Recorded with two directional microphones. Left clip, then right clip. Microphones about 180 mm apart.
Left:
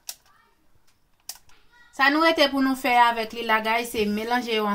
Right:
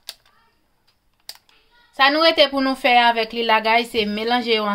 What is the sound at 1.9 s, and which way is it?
Speech, 20° right (ahead or behind).